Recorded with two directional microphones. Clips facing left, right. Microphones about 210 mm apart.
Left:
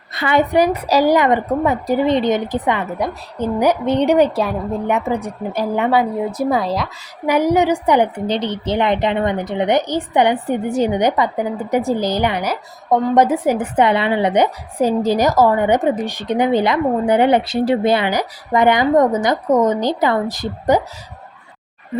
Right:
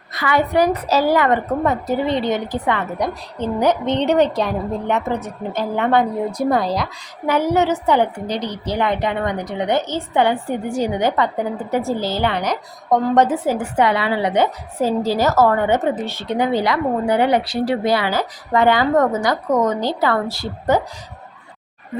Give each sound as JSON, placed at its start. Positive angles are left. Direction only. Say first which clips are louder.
{"t": 0.1, "sound": "a woman's voice", "louder": "left 2 dB", "side_deg": 25}
{"t": 7.3, "sound": "a woman's voice", "louder": "left 2 dB", "side_deg": 15}